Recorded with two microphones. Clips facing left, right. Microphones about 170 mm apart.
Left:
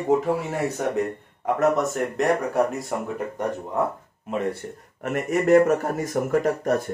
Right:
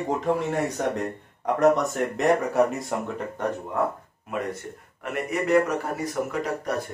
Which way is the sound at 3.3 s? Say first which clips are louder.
Left 1 dB; 15° left (ahead or behind).